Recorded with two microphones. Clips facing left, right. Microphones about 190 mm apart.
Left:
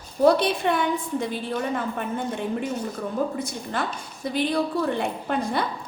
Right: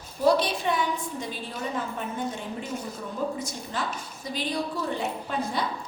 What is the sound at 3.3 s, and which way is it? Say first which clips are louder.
A woman's voice: left 4 dB; 55° left (ahead or behind).